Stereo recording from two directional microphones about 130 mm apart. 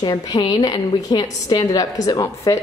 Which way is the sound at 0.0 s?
35° left (ahead or behind).